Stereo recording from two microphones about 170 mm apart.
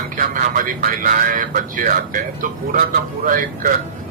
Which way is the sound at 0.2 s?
55° right (ahead or behind).